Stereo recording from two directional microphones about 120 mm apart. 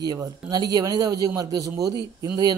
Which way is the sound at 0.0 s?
35° right (ahead or behind).